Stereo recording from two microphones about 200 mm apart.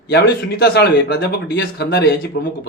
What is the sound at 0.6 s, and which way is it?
Speech, 55° left (ahead or behind).